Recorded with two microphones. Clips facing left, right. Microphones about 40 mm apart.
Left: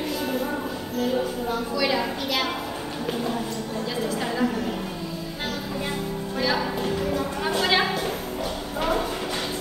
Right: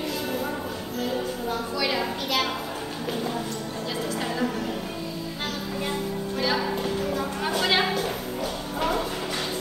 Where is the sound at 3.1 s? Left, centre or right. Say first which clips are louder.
Left 2 dB; centre.